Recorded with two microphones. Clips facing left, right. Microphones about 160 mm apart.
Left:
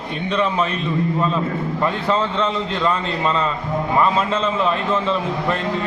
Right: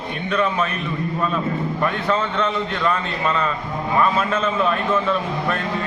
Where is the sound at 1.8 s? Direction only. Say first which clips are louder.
Left 2 dB; 30° left (ahead or behind).